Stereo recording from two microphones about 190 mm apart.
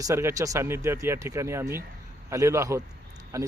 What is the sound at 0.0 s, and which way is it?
Speech, 15° right (ahead or behind).